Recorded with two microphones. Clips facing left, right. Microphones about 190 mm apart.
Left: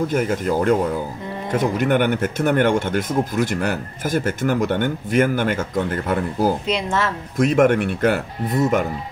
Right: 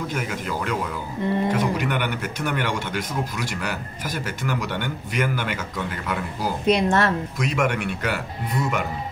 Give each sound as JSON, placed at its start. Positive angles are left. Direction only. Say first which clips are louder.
{"t": 0.1, "sound": "speech", "louder": "left 8 dB", "side_deg": 45}
{"t": 6.7, "sound": "speech", "louder": "right 3 dB", "side_deg": -60}
{"t": 7.3, "sound": "speech", "louder": "left 8 dB", "side_deg": 50}